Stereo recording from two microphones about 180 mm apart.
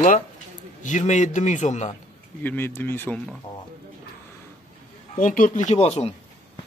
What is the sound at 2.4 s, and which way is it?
Speech, 10° left (ahead or behind).